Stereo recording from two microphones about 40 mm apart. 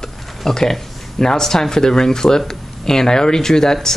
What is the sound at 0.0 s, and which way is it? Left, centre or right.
Speech, centre.